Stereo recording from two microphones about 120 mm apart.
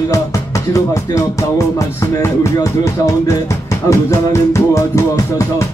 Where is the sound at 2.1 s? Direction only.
25° left (ahead or behind).